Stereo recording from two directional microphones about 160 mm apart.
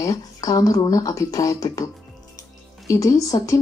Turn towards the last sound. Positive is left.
turn(degrees=20)  # may be behind; listen again after turning